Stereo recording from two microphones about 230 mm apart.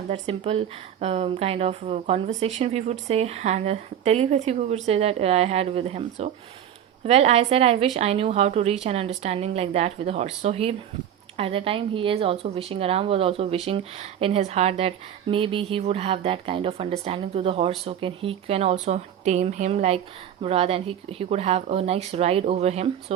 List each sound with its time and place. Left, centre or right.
0.1 s a woman's voice: right